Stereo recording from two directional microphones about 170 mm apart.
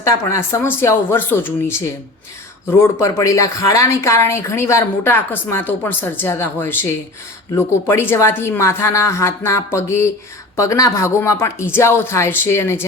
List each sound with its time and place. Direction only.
0.0 s speech: 15° left (ahead or behind)